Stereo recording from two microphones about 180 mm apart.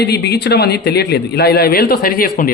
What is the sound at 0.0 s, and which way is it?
A man's voice, 65° left (ahead or behind).